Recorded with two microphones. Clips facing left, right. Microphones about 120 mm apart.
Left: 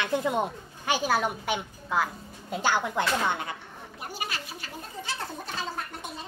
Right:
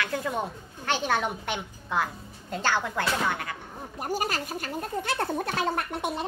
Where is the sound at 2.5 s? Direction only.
15° left (ahead or behind).